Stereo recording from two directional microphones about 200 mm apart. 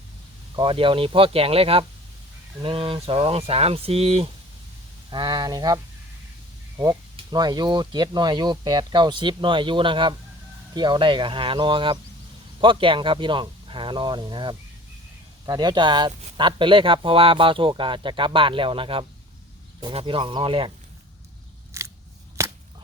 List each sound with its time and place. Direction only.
0.5 s speech: 25° right (ahead or behind)
21.7 s scissors: 15° right (ahead or behind)
22.4 s whip: 15° right (ahead or behind)